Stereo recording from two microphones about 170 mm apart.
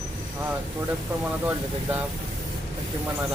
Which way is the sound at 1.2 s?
10° right (ahead or behind).